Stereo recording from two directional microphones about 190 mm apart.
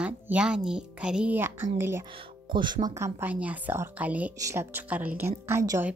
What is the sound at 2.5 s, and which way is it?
Speech, 25° right (ahead or behind).